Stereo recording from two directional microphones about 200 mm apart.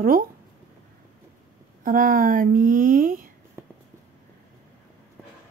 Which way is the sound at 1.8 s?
45° right (ahead or behind).